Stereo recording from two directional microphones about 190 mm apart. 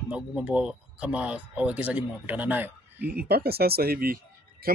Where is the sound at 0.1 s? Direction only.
5° right (ahead or behind).